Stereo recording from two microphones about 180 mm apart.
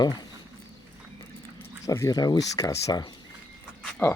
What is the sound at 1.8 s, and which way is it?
Speech, 15° left (ahead or behind).